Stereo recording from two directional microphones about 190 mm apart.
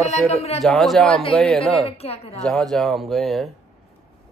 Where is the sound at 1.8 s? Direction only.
30° left (ahead or behind).